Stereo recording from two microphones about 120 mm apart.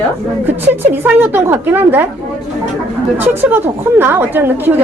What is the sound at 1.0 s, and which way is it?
A woman's voice, 15° right (ahead or behind).